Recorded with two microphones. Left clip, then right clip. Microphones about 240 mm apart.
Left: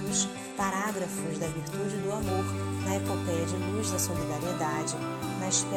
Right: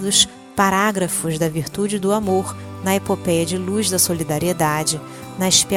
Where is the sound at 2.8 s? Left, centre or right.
Right.